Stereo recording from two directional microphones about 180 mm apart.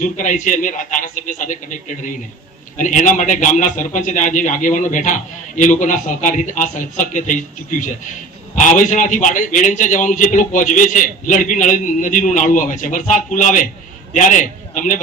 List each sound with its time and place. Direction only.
0.0 s a man's voice: 45° left (ahead or behind)